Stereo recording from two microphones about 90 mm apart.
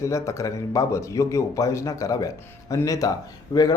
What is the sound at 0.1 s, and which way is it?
A man's voice, 35° left (ahead or behind).